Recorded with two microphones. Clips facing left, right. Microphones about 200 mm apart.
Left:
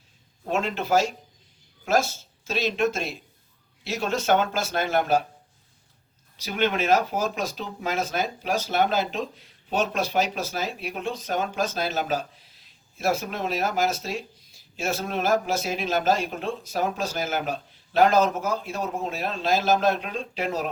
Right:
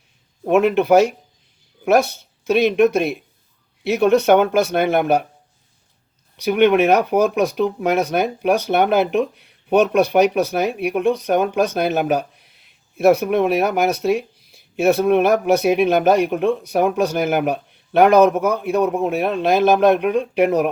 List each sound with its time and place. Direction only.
0.4 s speech: 60° right (ahead or behind)
6.3 s speech: 60° right (ahead or behind)